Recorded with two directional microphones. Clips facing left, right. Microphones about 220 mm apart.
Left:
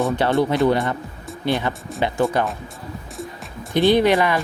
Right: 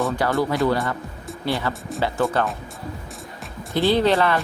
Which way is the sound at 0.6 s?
20° left (ahead or behind).